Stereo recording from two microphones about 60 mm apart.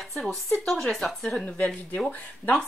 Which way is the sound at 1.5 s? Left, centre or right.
Left.